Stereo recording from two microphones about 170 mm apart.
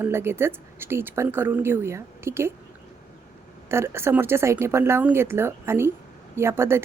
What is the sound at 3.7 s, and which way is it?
A woman's voice, 15° right (ahead or behind).